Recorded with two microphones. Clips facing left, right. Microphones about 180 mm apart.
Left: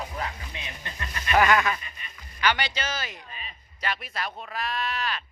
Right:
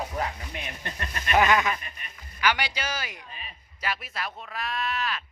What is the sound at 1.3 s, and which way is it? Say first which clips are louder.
A man's voice: left 1 dB; 20° right (ahead or behind).